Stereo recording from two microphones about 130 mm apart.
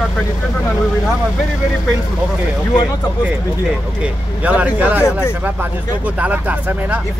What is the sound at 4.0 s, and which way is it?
Speech, 10° right (ahead or behind).